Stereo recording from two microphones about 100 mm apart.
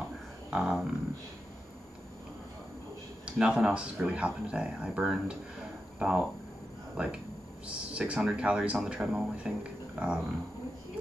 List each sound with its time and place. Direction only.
0.5 s speech: 10° right (ahead or behind)
3.3 s speech: 10° right (ahead or behind)
7.6 s speech: 10° right (ahead or behind)